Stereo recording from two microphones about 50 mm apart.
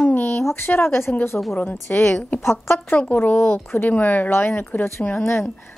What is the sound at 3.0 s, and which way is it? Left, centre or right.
A woman's voice, left.